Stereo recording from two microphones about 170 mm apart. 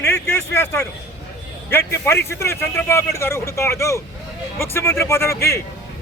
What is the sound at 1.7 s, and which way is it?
A man's voice, 15° left (ahead or behind).